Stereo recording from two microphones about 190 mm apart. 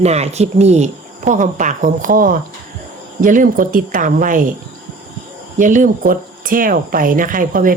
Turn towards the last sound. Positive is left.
turn(degrees=-50)  # may be behind; listen again after turning